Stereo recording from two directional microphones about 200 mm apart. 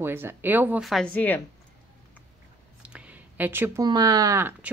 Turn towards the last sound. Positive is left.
turn(degrees=-10)  # may be behind; listen again after turning